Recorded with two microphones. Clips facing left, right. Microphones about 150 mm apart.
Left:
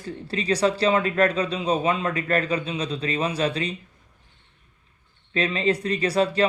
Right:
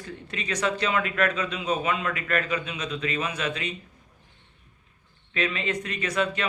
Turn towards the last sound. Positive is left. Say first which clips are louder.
# left 6 dB
turn(degrees=35)  # may be behind; listen again after turning